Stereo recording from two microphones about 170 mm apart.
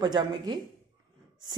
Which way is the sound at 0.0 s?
25° right (ahead or behind).